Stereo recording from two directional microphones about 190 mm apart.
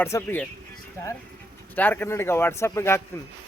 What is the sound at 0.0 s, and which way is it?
Speech, 10° left (ahead or behind).